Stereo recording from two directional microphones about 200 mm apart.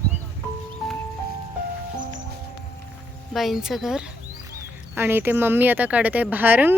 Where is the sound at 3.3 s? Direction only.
Centre (ahead or behind).